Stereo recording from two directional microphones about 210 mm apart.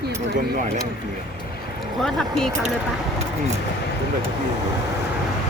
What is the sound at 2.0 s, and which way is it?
Speech, centre (ahead or behind).